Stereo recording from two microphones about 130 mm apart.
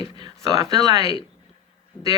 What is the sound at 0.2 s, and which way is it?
Speech, 35° right (ahead or behind).